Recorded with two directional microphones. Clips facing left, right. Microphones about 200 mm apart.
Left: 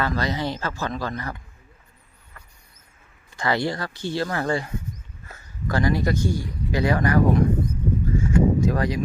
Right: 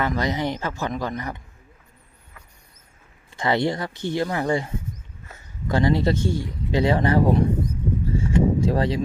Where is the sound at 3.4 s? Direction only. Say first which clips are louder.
Right 2 dB; 20° right (ahead or behind).